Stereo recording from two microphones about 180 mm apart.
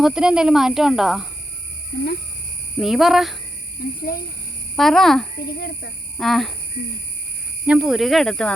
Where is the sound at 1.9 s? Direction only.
70° left (ahead or behind).